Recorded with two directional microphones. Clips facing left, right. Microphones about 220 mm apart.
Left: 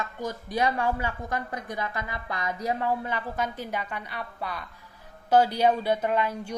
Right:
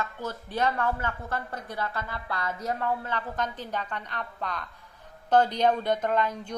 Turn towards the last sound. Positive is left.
turn(degrees=10)  # may be behind; listen again after turning